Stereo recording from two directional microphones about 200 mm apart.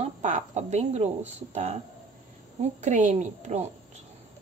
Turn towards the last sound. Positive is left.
turn(degrees=-35)  # may be behind; listen again after turning